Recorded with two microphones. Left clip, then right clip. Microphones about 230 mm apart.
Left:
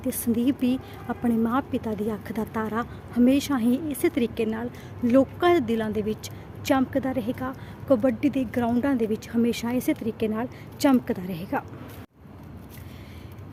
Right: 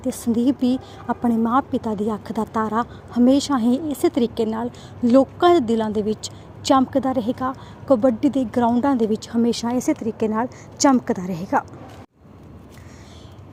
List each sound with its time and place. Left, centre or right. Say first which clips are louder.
0.0 s a woman's voice: right 4 dB; centre
11.2 s a woman's voice: right 8 dB; centre